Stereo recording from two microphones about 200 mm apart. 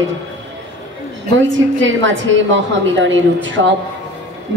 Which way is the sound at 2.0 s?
65° right (ahead or behind).